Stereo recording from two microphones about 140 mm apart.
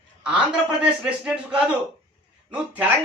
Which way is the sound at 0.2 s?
5° right (ahead or behind).